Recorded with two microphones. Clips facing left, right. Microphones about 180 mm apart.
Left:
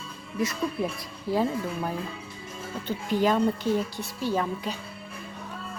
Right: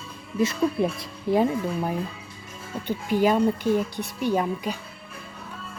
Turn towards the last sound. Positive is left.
turn(degrees=-15)  # may be behind; listen again after turning